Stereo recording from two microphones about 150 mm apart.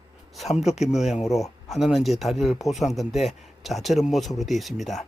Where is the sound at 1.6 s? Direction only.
Centre (ahead or behind).